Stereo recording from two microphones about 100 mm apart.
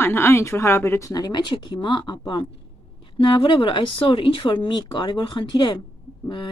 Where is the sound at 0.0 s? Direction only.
25° left (ahead or behind).